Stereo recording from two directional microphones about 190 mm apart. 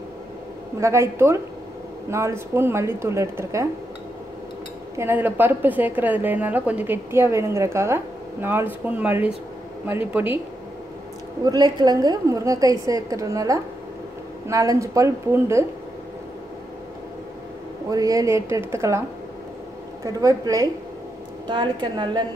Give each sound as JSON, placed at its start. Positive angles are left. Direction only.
{"t": 0.7, "sound": "a woman's voice", "side_deg": -15}
{"t": 4.9, "sound": "a woman's voice", "side_deg": -10}
{"t": 11.4, "sound": "a woman's voice", "side_deg": -20}
{"t": 17.8, "sound": "a woman's voice", "side_deg": -20}
{"t": 20.1, "sound": "a woman's voice", "side_deg": -20}